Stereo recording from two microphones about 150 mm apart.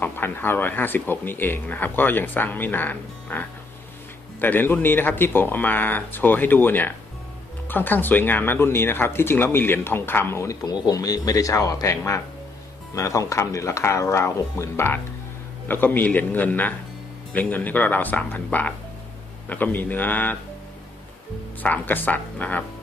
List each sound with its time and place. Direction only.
0.0 s speech: 15° left (ahead or behind)
21.6 s speech: 10° left (ahead or behind)